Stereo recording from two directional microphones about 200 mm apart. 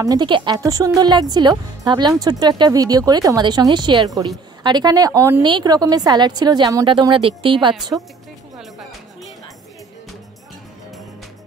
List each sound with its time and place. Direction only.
0.0 s speech: 20° right (ahead or behind)
8.5 s music: centre (ahead or behind)